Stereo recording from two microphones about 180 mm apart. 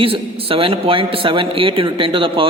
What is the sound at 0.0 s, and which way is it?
A man's voice, 30° right (ahead or behind).